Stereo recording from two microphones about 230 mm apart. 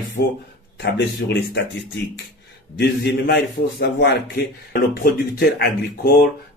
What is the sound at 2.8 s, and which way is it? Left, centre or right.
Speech, left.